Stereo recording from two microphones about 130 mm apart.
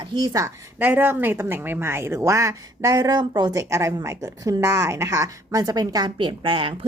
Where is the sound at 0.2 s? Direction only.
25° right (ahead or behind).